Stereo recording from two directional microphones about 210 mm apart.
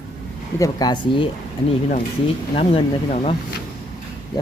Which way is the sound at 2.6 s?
30° left (ahead or behind).